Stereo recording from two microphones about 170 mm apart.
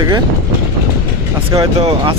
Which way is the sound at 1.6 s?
35° right (ahead or behind).